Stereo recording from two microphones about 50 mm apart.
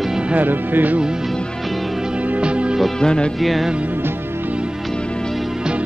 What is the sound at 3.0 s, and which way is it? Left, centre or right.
Music, centre.